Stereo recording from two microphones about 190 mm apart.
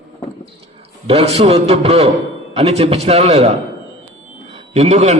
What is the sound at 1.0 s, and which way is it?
A man's voice, 35° right (ahead or behind).